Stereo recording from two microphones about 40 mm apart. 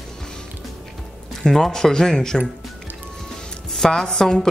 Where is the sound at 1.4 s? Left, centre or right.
Centre.